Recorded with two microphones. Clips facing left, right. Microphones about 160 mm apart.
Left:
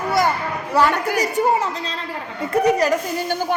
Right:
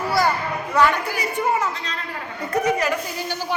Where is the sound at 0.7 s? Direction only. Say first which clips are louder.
Left 2 dB; 40° left (ahead or behind).